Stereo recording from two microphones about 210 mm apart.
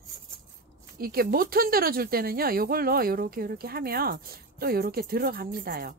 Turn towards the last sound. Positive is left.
turn(degrees=-45)  # may be behind; listen again after turning